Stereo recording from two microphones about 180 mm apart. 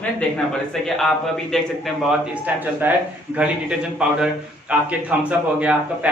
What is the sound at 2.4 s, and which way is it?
Speech, 10° right (ahead or behind).